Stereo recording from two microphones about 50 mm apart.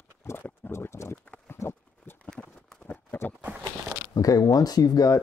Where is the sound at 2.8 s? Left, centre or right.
Left.